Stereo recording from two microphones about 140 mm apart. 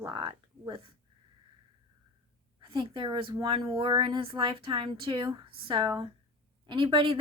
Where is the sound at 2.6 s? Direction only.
35° right (ahead or behind).